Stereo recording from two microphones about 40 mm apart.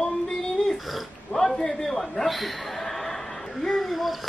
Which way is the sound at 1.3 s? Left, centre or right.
Centre.